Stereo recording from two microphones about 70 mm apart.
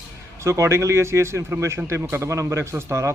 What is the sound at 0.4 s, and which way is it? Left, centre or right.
A man's voice, right.